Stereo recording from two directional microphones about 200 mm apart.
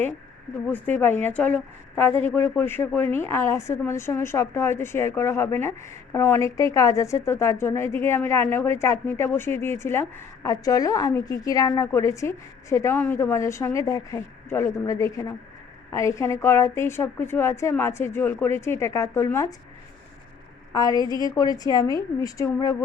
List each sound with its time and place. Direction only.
0.7 s a woman's voice: 10° left (ahead or behind)
20.7 s a woman's voice: 20° left (ahead or behind)